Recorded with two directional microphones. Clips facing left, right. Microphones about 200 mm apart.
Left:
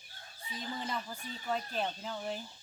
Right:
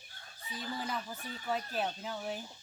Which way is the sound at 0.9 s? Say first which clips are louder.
Even; 5° right (ahead or behind).